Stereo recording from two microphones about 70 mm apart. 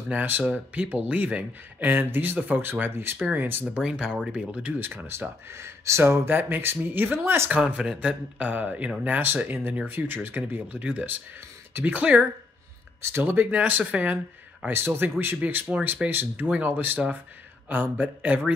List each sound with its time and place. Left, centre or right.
0.1 s speech: right
3.6 s speech: centre
4.7 s speech: right
7.5 s speech: centre
8.5 s speech: right
13.0 s speech: right; by 14.7 s centre
14.9 s speech: right
16.4 s speech: centre